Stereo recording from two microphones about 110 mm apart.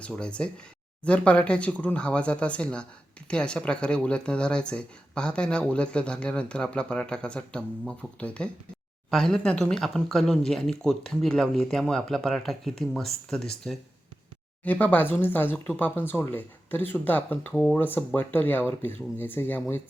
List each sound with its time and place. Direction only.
0.1 s speech: 10° left (ahead or behind)
14.6 s speech: 15° left (ahead or behind)